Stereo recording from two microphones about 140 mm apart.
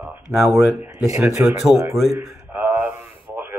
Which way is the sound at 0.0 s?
Centre (ahead or behind).